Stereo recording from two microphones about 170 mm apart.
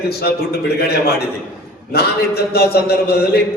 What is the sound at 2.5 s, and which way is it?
Speech, 70° left (ahead or behind).